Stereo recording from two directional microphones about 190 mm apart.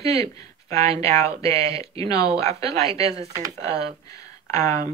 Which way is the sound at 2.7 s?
30° right (ahead or behind).